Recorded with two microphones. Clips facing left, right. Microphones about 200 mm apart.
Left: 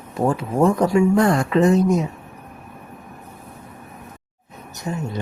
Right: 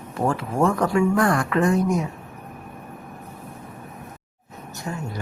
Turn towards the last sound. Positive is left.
turn(degrees=20)  # may be behind; listen again after turning